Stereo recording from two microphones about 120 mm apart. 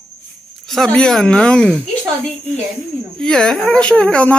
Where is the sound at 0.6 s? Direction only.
5° left (ahead or behind).